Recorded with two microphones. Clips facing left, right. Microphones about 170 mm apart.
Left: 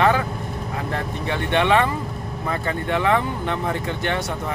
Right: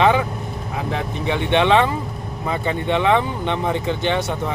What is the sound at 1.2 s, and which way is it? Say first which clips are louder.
Speech: right 3 dB; 20° right (ahead or behind).